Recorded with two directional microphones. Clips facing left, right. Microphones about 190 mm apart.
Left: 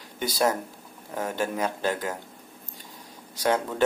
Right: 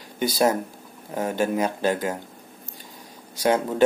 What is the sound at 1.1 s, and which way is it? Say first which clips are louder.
Speech: right 5 dB; 20° right (ahead or behind).